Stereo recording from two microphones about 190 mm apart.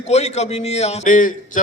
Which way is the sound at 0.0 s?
35° left (ahead or behind).